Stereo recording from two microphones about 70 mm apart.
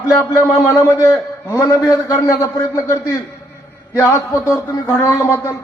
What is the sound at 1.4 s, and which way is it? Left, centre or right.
A man's voice, left.